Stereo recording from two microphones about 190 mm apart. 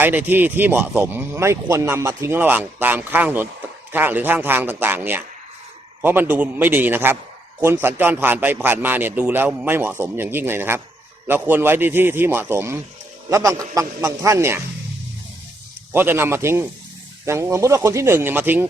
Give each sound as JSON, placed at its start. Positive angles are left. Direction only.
{"t": 0.0, "sound": "speech", "side_deg": -10}
{"t": 15.9, "sound": "speech", "side_deg": -10}